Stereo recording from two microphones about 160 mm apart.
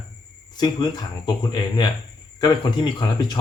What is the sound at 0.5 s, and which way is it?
Speech, 25° left (ahead or behind).